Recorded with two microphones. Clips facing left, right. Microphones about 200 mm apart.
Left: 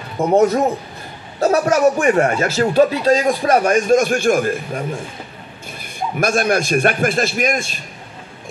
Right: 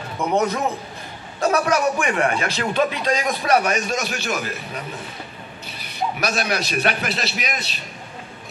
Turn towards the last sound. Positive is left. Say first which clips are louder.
# left 9 dB
turn(degrees=50)  # may be behind; listen again after turning